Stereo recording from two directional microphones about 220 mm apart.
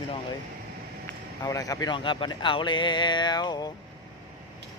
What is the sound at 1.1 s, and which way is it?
Speech, 15° left (ahead or behind).